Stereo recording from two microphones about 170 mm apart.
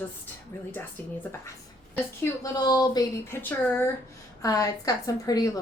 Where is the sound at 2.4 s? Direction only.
25° left (ahead or behind).